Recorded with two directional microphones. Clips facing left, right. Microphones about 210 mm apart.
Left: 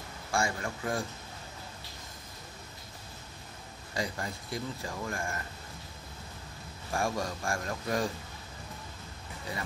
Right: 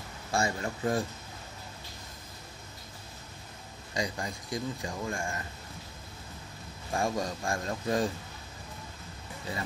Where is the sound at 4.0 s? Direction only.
15° right (ahead or behind).